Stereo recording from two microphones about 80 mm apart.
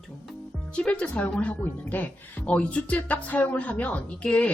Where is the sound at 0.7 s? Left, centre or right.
Centre.